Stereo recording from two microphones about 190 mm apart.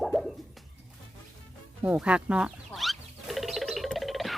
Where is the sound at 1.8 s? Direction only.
5° right (ahead or behind).